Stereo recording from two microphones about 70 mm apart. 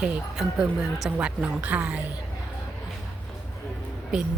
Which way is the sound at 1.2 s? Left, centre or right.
Centre.